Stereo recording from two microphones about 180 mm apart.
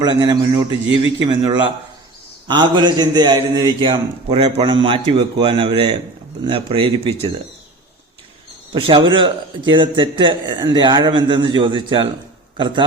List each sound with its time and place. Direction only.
0.0 s a man's voice: 25° right (ahead or behind)
8.7 s a man's voice: 30° right (ahead or behind)